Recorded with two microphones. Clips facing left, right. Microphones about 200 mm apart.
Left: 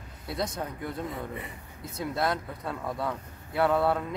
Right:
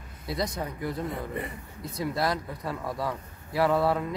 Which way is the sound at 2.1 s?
5° right (ahead or behind).